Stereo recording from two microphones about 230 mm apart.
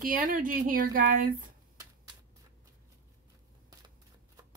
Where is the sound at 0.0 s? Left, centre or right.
Right.